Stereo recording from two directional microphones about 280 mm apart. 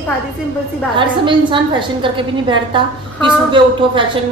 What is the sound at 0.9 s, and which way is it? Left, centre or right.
A woman's voice, centre.